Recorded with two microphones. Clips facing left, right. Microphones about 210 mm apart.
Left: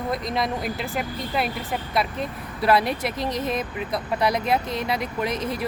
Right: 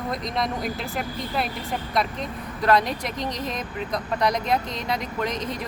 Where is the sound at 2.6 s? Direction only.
10° left (ahead or behind).